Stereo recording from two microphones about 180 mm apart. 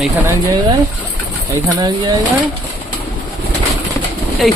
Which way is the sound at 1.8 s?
25° right (ahead or behind).